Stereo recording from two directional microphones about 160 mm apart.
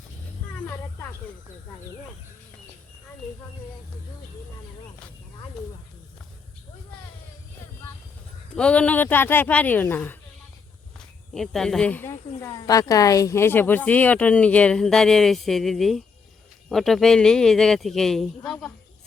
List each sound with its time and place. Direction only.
0.7 s snake: 15° left (ahead or behind)
8.5 s speech: 5° left (ahead or behind)
11.3 s speech: centre (ahead or behind)